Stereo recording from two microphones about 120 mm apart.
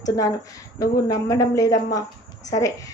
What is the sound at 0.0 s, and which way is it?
A woman's voice, 30° left (ahead or behind).